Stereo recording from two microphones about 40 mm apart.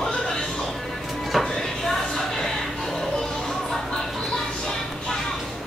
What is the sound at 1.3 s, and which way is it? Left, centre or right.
Chopping, centre.